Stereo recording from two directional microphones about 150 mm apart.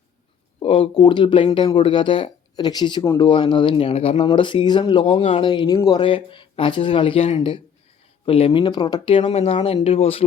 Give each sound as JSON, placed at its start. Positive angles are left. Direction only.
{"t": 0.6, "sound": "speech", "side_deg": 40}
{"t": 6.0, "sound": "speech", "side_deg": 35}